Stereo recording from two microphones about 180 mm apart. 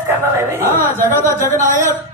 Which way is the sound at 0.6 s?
10° left (ahead or behind).